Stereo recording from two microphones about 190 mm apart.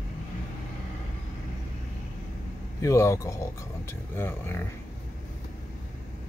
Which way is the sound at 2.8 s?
15° left (ahead or behind).